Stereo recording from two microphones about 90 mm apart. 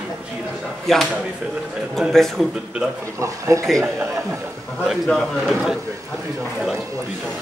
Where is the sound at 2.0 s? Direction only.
5° left (ahead or behind).